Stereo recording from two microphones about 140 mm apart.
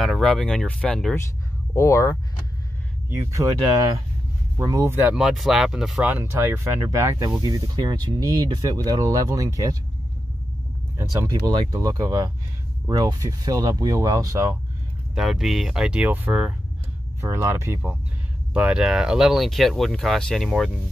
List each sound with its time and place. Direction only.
0.0 s speech: centre (ahead or behind)
1.8 s speech: 20° left (ahead or behind)
3.1 s speech: 20° right (ahead or behind)
5.1 s speech: 5° right (ahead or behind)
6.0 s speech: 15° right (ahead or behind)
11.0 s speech: 20° right (ahead or behind)
15.1 s speech: centre (ahead or behind)
17.2 s speech: 20° right (ahead or behind)
18.5 s speech: 5° right (ahead or behind)